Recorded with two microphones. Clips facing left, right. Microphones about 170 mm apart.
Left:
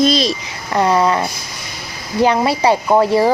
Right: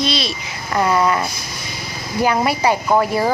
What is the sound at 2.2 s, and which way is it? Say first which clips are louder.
Speech: left 3 dB; 30° left (ahead or behind).